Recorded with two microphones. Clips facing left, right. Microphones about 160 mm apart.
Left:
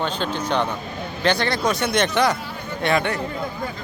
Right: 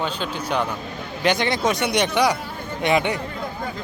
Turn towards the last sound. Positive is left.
turn(degrees=-15)  # may be behind; listen again after turning